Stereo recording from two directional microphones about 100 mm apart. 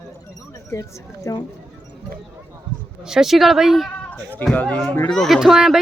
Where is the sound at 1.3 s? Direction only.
35° left (ahead or behind).